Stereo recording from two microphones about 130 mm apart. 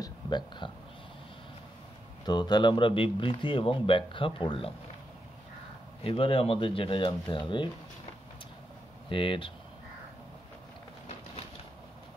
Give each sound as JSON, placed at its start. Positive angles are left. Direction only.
{"t": 0.0, "sound": "a sound", "side_deg": 35}
{"t": 2.2, "sound": "speech", "side_deg": 35}
{"t": 6.0, "sound": "speech", "side_deg": 45}
{"t": 9.1, "sound": "speech", "side_deg": 40}